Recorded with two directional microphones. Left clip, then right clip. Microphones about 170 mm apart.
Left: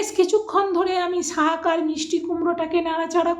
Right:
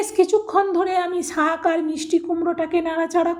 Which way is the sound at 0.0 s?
20° right (ahead or behind).